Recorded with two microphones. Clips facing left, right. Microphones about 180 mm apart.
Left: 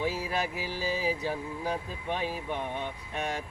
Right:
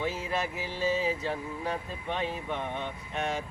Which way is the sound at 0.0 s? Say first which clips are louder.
Left 1 dB; 10° left (ahead or behind).